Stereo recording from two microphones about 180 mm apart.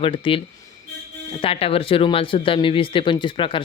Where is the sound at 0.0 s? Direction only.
30° left (ahead or behind).